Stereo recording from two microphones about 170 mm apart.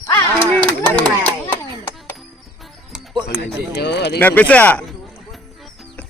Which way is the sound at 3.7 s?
80° left.